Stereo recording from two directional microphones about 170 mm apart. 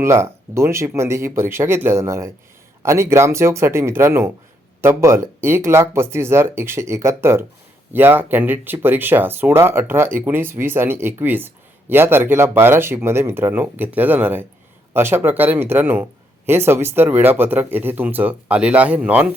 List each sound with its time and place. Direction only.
0.0 s speech: 15° right (ahead or behind)